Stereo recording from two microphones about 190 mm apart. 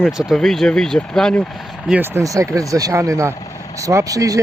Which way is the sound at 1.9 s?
10° right (ahead or behind).